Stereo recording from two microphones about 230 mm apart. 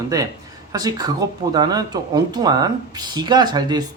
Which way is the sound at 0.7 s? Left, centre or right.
Centre.